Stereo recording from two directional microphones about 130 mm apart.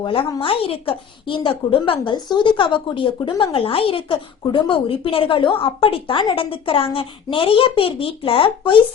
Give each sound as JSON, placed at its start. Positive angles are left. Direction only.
{"t": 0.0, "sound": "a woman's voice", "side_deg": 45}